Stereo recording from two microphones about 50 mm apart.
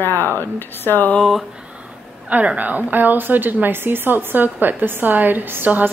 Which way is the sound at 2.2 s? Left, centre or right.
Right.